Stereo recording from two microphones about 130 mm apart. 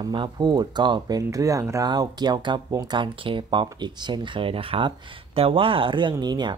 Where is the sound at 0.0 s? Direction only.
35° right (ahead or behind).